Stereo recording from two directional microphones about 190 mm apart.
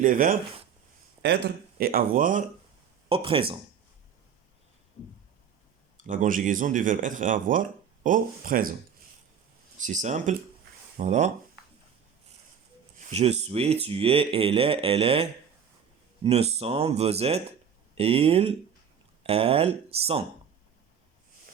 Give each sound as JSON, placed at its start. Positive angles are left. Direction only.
{"t": 0.0, "sound": "speech", "side_deg": -45}
{"t": 1.8, "sound": "speech", "side_deg": -50}
{"t": 3.1, "sound": "speech", "side_deg": -30}
{"t": 6.0, "sound": "speech", "side_deg": -45}
{"t": 9.8, "sound": "speech", "side_deg": -40}
{"t": 13.0, "sound": "speech", "side_deg": -35}